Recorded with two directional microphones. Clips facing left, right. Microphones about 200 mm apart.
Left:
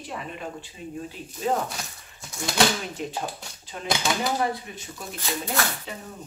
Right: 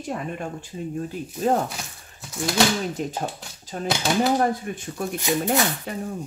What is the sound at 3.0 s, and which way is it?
Speech, 45° right (ahead or behind).